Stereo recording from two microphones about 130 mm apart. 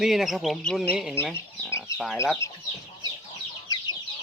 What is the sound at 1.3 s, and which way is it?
Chicken, 20° left (ahead or behind).